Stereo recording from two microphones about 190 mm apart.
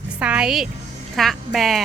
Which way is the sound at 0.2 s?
5° right (ahead or behind).